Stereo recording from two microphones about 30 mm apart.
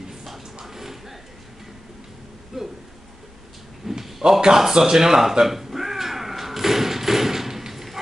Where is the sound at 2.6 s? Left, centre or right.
Centre.